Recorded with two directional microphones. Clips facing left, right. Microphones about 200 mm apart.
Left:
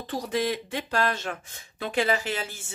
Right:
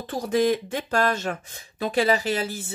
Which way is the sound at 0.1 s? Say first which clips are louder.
Right 6 dB; 45° right (ahead or behind).